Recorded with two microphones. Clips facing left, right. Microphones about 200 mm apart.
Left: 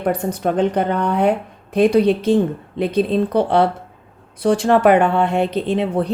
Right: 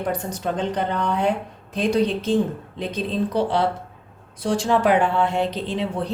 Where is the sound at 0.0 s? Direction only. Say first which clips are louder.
Left 6 dB; 60° left (ahead or behind).